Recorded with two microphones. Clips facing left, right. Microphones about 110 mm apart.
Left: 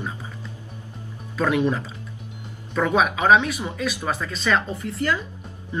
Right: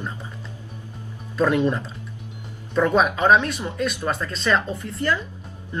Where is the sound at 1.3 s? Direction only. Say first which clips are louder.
Right 2 dB; centre (ahead or behind).